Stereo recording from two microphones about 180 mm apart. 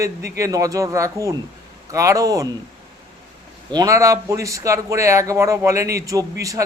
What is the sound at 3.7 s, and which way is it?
A man's voice, 20° right (ahead or behind).